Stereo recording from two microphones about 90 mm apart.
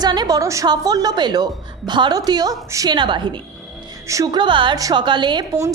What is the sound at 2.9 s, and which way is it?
A woman's voice, 60° right (ahead or behind).